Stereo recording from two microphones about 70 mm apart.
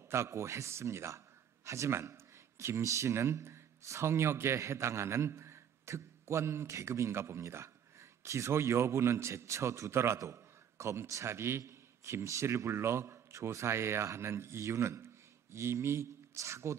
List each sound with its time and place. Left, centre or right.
0.1 s a man's voice: right